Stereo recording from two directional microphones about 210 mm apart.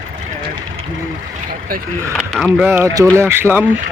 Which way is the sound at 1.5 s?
45° right (ahead or behind).